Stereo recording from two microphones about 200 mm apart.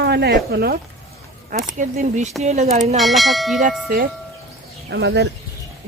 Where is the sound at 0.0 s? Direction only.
55° right (ahead or behind); by 3.0 s 30° right (ahead or behind).